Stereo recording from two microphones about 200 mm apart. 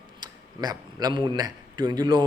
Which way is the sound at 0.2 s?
20° right (ahead or behind).